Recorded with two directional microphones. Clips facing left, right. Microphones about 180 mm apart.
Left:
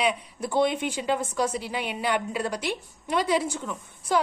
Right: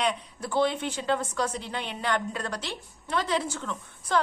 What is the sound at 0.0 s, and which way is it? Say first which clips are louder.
A woman's voice: left 2 dB; 10° left (ahead or behind).